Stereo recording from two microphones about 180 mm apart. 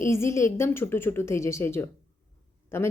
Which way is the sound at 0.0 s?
15° left (ahead or behind).